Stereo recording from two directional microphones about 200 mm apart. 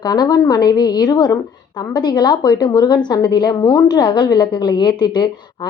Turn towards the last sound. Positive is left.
turn(degrees=20)  # may be behind; listen again after turning